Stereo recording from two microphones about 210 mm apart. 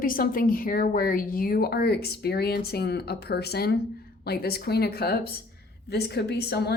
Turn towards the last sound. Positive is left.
turn(degrees=50)  # may be behind; listen again after turning